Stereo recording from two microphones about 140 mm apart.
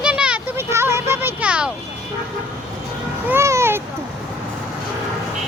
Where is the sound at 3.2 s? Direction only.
20° right (ahead or behind).